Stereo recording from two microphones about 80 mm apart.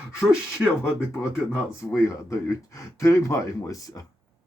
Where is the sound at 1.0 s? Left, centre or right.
Centre.